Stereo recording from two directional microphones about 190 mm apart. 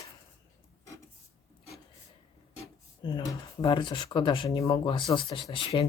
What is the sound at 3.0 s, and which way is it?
Speech, 25° left (ahead or behind).